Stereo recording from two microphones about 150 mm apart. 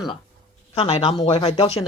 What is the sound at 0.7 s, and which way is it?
Speech, 40° left (ahead or behind).